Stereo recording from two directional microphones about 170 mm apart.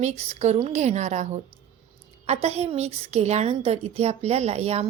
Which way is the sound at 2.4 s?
40° right (ahead or behind).